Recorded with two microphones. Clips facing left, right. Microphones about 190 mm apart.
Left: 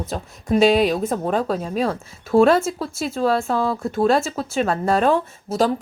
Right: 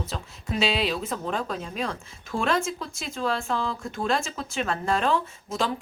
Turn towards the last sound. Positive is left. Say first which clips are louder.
# left 8 dB
turn(degrees=40)  # may be behind; listen again after turning